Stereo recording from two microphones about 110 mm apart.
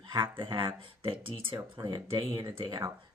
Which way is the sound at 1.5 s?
35° right (ahead or behind).